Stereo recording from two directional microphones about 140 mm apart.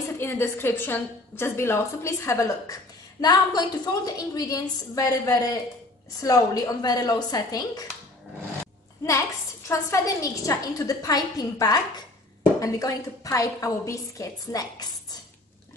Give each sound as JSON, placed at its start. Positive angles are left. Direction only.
{"t": 0.2, "sound": "a woman's voice", "side_deg": 15}
{"t": 9.7, "sound": "a woman's voice", "side_deg": 20}